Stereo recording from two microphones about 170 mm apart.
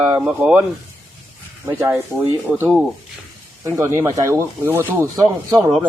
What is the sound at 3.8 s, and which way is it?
A man's voice, 15° right (ahead or behind).